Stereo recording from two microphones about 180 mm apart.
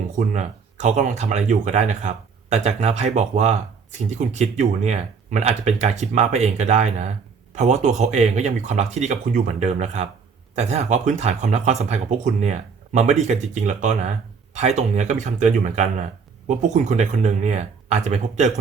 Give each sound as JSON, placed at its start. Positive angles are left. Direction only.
{"t": 0.2, "sound": "speech", "side_deg": -40}